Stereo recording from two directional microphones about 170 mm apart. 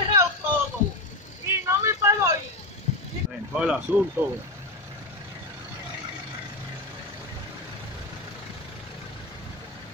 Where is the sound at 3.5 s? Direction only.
5° right (ahead or behind).